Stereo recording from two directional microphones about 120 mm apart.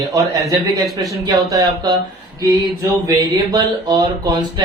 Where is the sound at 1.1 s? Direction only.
25° right (ahead or behind).